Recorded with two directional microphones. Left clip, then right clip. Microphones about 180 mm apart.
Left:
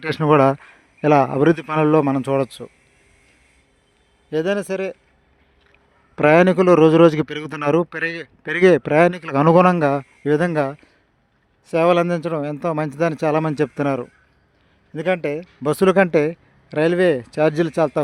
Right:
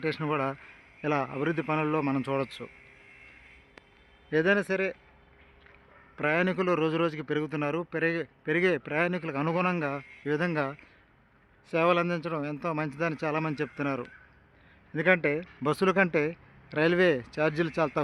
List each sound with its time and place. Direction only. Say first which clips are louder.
0.0 s a man's voice: left 14 dB; 55° left (ahead or behind); by 2.6 s 40° left (ahead or behind)
4.3 s speech: left 4 dB; 30° left (ahead or behind)
6.1 s a man's voice: left 14 dB; 60° left (ahead or behind)
9.8 s a man's voice: left 13 dB; 50° left (ahead or behind)
14.9 s speech: left 4 dB; 25° left (ahead or behind)
15.7 s a man's voice: left 10 dB; 45° left (ahead or behind)